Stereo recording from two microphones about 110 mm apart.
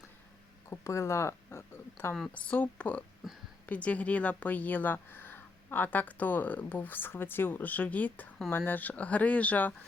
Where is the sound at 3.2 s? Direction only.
5° right (ahead or behind).